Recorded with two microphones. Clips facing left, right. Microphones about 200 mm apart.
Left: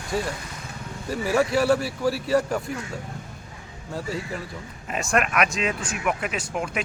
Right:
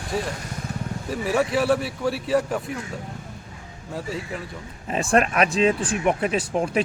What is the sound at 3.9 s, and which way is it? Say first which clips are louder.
Speech: even; centre (ahead or behind).